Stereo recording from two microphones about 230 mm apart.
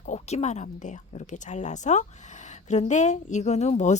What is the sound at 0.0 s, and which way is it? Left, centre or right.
Speech, left.